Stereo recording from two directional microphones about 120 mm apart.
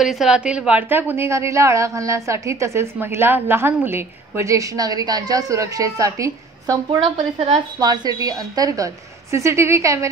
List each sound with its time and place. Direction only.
0.0 s a woman's voice: 5° right (ahead or behind); by 7.0 s 25° right (ahead or behind)
7.3 s a woman's voice: 65° right (ahead or behind)
7.8 s a woman's voice: 35° right (ahead or behind)